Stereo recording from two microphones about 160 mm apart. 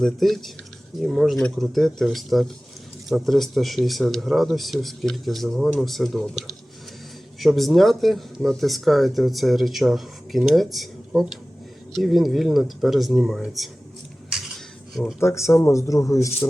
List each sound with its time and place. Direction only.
0.0 s speech: centre (ahead or behind)
14.3 s dishes: centre (ahead or behind)
15.2 s speech: 20° left (ahead or behind)